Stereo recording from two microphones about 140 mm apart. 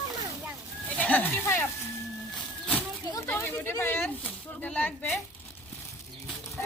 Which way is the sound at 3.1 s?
20° left (ahead or behind).